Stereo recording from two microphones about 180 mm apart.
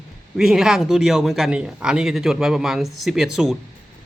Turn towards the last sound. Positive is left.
turn(degrees=0)  # may be behind; listen again after turning